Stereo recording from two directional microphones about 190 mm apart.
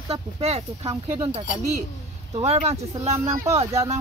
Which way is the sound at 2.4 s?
35° right (ahead or behind).